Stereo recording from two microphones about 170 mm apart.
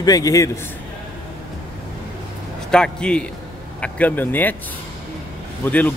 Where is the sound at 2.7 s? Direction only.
5° left (ahead or behind).